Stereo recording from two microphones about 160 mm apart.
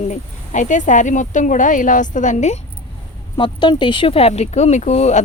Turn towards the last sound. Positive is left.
turn(degrees=45)  # may be behind; listen again after turning